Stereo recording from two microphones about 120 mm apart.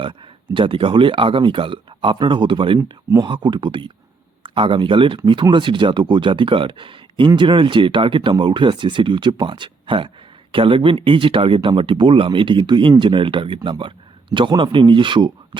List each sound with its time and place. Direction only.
0.5 s speech: 45° right (ahead or behind)
2.7 s speech: 30° right (ahead or behind)